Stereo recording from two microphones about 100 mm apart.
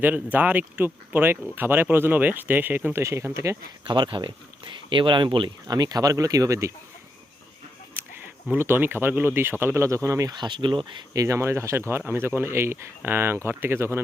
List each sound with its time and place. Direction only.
0.0 s speech: 15° right (ahead or behind)
3.8 s speech: 50° right (ahead or behind)
5.6 s speech: 40° right (ahead or behind)
8.5 s speech: 20° right (ahead or behind)
10.3 s speech: 50° right (ahead or behind)
11.1 s speech: 30° right (ahead or behind)